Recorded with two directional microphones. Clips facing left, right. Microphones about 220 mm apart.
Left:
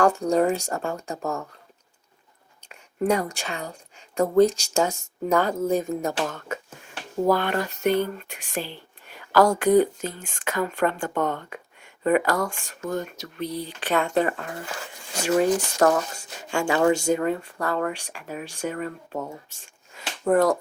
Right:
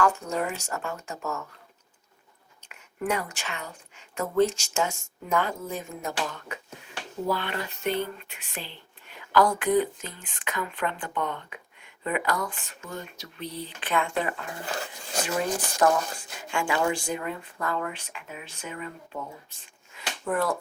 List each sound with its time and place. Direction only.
0.0 s speech: 35° left (ahead or behind)
2.6 s a woman's voice: 35° left (ahead or behind)
15.8 s speech: 40° left (ahead or behind)
19.6 s a sound: 40° left (ahead or behind)